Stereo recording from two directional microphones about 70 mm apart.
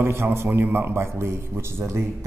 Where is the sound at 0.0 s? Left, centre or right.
Right.